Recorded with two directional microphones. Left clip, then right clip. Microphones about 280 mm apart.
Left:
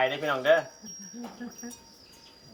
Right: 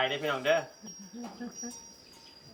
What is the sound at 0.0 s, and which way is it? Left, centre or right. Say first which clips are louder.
Speech: left 4 dB; centre.